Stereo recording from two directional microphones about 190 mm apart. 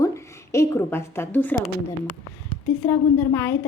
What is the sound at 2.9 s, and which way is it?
Speech, 15° left (ahead or behind).